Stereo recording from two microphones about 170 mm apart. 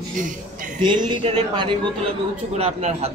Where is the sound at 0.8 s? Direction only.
25° right (ahead or behind).